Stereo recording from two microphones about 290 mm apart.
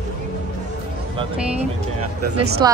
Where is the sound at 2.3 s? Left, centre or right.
Right.